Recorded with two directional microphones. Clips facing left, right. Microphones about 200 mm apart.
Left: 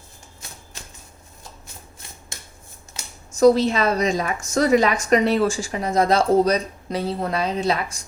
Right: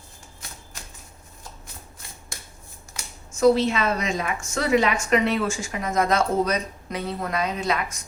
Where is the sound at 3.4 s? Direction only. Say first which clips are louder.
Left 3 dB; 35° left (ahead or behind).